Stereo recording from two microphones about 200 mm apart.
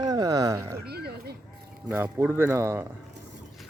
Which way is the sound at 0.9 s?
50° right (ahead or behind).